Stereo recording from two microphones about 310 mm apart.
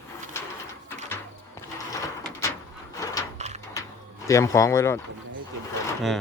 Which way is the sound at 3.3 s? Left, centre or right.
Right.